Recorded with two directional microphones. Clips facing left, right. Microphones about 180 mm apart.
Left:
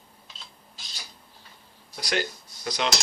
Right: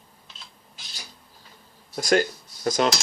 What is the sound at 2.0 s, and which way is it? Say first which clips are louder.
Speech: right 8 dB; 45° right (ahead or behind).